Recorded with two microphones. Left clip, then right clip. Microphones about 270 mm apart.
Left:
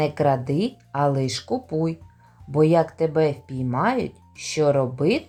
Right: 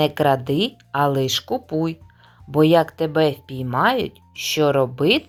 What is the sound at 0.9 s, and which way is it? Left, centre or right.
Speech, right.